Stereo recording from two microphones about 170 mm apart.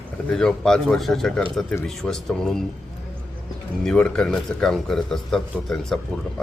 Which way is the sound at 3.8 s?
5° left (ahead or behind).